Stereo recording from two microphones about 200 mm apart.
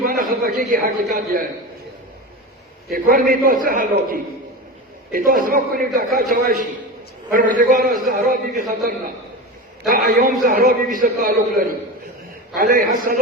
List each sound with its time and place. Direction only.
0.0 s a man's voice: 45° right (ahead or behind)
2.9 s a man's voice: 45° right (ahead or behind)